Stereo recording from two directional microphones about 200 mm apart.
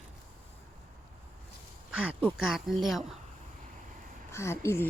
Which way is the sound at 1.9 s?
5° right (ahead or behind).